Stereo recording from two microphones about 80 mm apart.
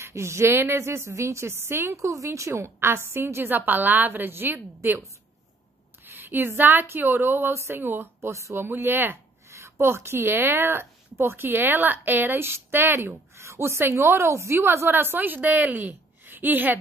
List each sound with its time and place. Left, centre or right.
0.0 s a woman's voice: right
6.0 s speech: right
8.6 s speech: right